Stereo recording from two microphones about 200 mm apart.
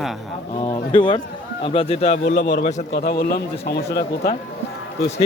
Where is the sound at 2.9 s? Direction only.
50° left (ahead or behind).